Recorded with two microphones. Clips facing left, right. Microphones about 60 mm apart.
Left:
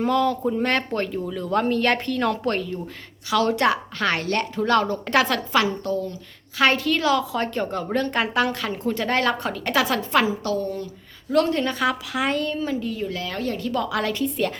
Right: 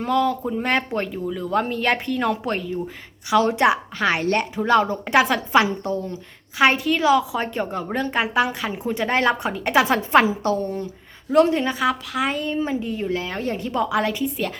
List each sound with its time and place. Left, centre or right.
0.0 s a woman's voice: centre
3.2 s a woman's voice: right
6.6 s a woman's voice: centre
11.8 s speech: centre
12.5 s a woman's voice: right